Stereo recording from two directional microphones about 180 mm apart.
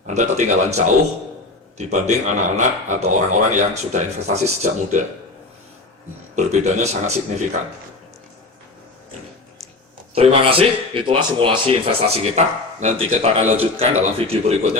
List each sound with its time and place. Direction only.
0.1 s speech: 40° right (ahead or behind)
6.3 s speech: 40° right (ahead or behind)
10.2 s speech: 30° right (ahead or behind)